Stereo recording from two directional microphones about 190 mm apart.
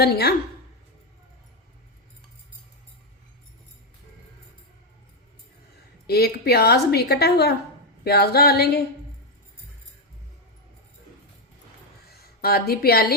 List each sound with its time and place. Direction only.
0.0 s a woman's voice: 55° left (ahead or behind)
6.1 s a woman's voice: 55° left (ahead or behind)
12.1 s a woman's voice: 55° left (ahead or behind)